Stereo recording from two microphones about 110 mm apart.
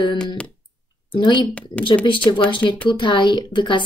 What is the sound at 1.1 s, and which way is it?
Speech, 45° left (ahead or behind).